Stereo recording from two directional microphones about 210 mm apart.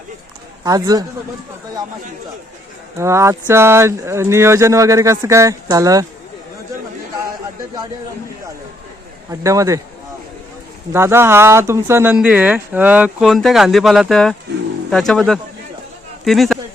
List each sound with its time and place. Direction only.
0.6 s speech: 20° right (ahead or behind)
3.0 s speech: 15° right (ahead or behind)
9.3 s speech: 15° right (ahead or behind)
10.9 s speech: 10° right (ahead or behind)